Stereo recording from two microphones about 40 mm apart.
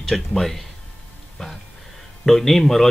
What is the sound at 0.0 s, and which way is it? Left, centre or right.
Speech, centre.